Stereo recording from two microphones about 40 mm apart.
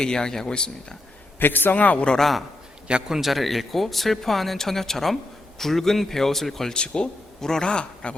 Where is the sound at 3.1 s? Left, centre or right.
Centre.